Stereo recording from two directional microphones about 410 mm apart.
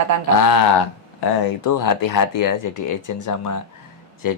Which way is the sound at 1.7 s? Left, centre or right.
Left.